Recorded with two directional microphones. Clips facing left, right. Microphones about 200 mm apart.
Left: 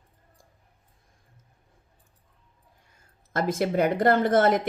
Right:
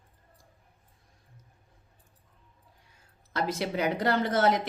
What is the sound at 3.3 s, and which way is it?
Speech, 50° left (ahead or behind).